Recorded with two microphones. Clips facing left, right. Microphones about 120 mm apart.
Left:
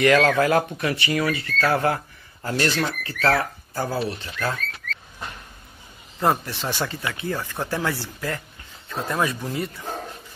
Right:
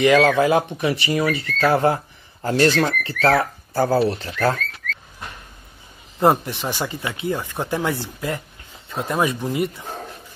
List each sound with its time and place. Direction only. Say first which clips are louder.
0.0 s speech: right 2 dB; 15° right (ahead or behind); by 4.6 s 40° right (ahead or behind)
6.1 s speech: right 5 dB; 20° right (ahead or behind)